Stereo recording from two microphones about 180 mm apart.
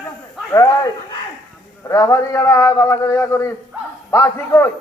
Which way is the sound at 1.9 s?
15° left (ahead or behind).